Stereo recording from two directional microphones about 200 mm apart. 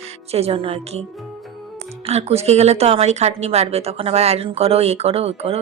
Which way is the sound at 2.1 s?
30° right (ahead or behind).